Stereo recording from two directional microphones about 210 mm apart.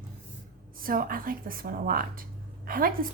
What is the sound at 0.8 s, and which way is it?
A woman's voice, 40° right (ahead or behind).